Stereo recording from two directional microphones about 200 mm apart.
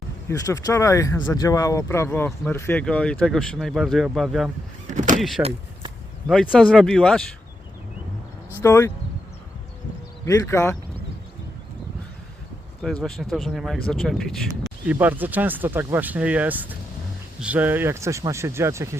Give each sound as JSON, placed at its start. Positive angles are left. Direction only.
{"t": 0.3, "sound": "speech", "side_deg": 15}
{"t": 4.9, "sound": "power windows", "side_deg": -40}
{"t": 5.4, "sound": "speech", "side_deg": -30}
{"t": 6.5, "sound": "speech", "side_deg": 5}
{"t": 8.6, "sound": "speech", "side_deg": 15}
{"t": 10.2, "sound": "speech", "side_deg": 15}
{"t": 12.8, "sound": "speech", "side_deg": 0}